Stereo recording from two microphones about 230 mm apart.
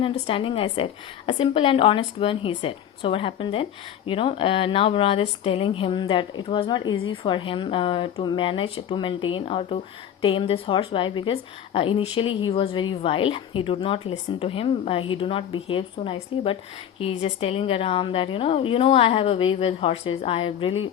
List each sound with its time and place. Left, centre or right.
0.0 s speech: left